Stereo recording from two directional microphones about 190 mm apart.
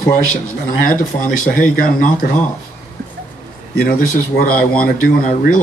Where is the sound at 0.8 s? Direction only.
45° left (ahead or behind).